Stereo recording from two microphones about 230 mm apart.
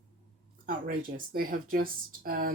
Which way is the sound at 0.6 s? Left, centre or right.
Right.